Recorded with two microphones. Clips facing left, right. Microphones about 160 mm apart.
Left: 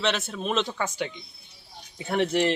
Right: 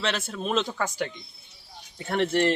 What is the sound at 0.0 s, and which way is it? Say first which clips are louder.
Speech: left 2 dB; 5° left (ahead or behind).